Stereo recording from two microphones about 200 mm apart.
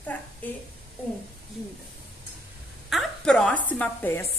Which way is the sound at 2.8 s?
Centre (ahead or behind).